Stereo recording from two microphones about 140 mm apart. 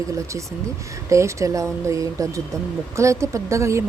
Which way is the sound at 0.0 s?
20° right (ahead or behind).